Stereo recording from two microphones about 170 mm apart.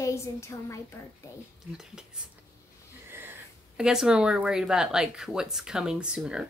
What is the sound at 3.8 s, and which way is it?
Speech, 5° right (ahead or behind).